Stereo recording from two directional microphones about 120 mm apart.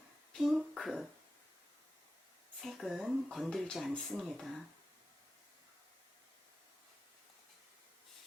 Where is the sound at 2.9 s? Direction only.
10° right (ahead or behind).